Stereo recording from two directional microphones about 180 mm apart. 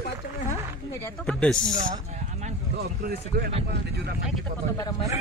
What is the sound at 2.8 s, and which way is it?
Speech, 60° right (ahead or behind).